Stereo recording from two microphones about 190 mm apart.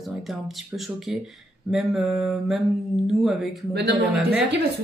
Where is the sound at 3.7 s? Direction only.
60° right (ahead or behind).